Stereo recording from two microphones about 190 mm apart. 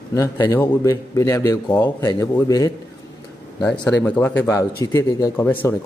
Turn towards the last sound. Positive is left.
turn(degrees=15)  # may be behind; listen again after turning